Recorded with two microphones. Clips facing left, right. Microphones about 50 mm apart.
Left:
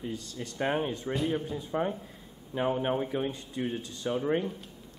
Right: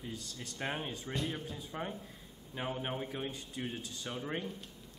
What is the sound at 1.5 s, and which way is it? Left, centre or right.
A man's voice, left.